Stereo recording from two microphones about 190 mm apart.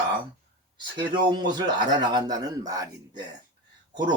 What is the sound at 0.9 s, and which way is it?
Speech, 25° right (ahead or behind).